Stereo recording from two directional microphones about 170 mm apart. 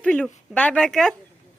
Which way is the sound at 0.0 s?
10° left (ahead or behind).